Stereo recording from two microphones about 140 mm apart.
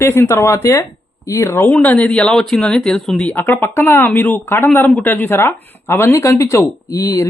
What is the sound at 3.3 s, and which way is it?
Speech, 15° left (ahead or behind).